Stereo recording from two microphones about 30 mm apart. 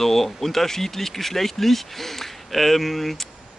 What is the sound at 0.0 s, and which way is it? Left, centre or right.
Speech, centre.